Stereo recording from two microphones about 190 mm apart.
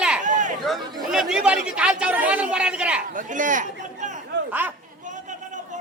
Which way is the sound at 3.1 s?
45° right (ahead or behind).